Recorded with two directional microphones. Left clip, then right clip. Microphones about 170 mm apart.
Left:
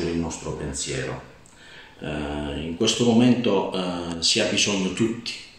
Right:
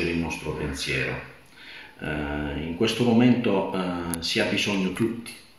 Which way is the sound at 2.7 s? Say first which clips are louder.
Left 2 dB; 5° right (ahead or behind).